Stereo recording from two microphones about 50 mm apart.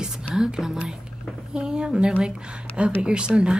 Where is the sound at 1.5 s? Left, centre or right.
Centre.